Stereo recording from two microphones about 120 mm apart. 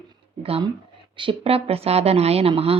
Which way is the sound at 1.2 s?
50° right (ahead or behind).